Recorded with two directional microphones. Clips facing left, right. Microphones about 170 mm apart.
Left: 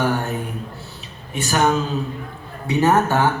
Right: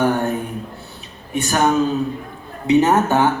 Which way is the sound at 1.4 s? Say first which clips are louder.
Right 2 dB; 20° right (ahead or behind).